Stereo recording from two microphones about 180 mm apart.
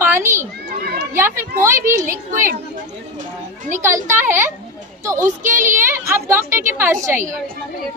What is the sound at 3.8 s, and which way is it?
A woman's voice, 15° right (ahead or behind).